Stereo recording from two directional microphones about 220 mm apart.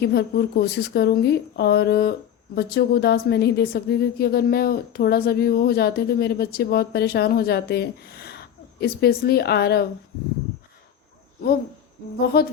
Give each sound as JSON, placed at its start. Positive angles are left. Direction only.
{"t": 0.0, "sound": "a woman's voice", "side_deg": 45}
{"t": 12.3, "sound": "a woman's voice", "side_deg": 45}